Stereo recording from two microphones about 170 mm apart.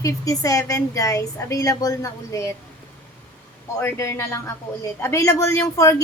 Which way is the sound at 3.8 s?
15° left (ahead or behind).